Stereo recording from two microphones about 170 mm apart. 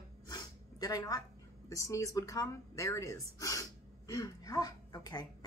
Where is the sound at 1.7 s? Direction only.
20° left (ahead or behind).